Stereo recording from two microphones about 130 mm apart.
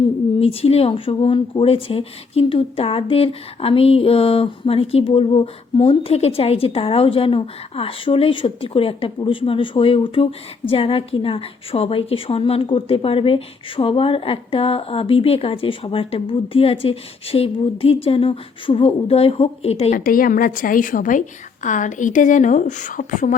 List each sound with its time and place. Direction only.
0.3 s speech: 50° left (ahead or behind)
19.9 s a woman's voice: 90° left